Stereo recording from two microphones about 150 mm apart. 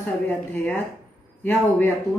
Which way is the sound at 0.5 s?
15° left (ahead or behind).